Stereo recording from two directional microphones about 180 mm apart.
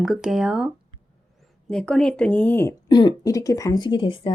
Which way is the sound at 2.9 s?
20° left (ahead or behind).